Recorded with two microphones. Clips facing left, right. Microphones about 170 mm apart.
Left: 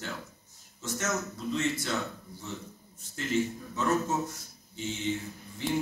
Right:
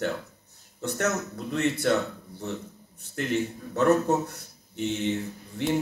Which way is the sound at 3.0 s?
60° right (ahead or behind).